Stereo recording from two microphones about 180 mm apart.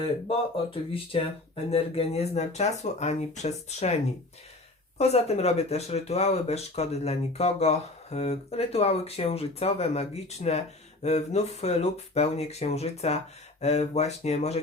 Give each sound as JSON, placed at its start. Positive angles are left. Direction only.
{"t": 0.0, "sound": "speech", "side_deg": 30}
{"t": 4.9, "sound": "speech", "side_deg": 35}